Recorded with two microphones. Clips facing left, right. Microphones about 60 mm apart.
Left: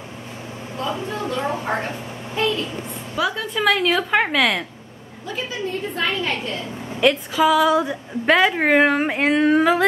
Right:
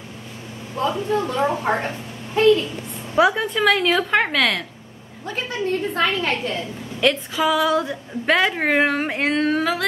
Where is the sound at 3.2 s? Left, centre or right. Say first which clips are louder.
Right 6 dB; centre.